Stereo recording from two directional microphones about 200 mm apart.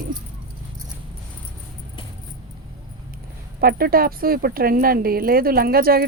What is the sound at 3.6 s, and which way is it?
Speech, 45° right (ahead or behind).